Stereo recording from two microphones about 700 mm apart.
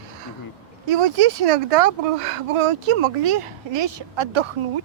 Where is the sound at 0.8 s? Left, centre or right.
Right.